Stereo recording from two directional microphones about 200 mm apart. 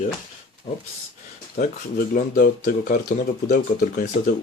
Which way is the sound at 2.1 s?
45° left (ahead or behind).